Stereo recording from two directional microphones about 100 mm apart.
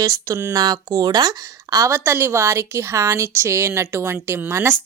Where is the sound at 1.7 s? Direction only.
30° right (ahead or behind).